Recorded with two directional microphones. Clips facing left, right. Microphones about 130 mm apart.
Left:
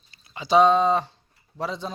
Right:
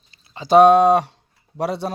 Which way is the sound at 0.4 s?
60° right (ahead or behind).